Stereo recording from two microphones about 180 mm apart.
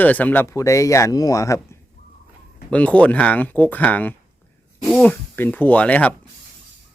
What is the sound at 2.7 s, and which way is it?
Speech, 5° left (ahead or behind).